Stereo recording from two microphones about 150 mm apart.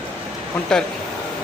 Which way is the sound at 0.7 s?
5° left (ahead or behind).